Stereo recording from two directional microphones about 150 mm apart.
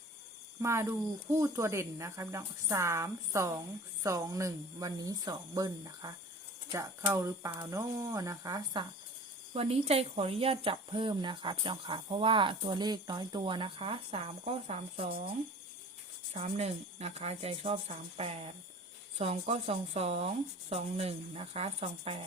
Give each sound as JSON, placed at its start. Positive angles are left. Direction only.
{"t": 0.6, "sound": "speech", "side_deg": -20}
{"t": 9.5, "sound": "speech", "side_deg": -40}
{"t": 16.3, "sound": "speech", "side_deg": -45}